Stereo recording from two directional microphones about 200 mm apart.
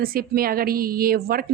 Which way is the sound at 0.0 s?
50° right (ahead or behind).